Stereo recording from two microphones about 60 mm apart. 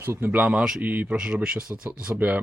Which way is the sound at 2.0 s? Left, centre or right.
Right.